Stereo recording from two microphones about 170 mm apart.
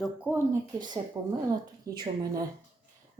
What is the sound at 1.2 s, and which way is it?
Speech, 20° right (ahead or behind).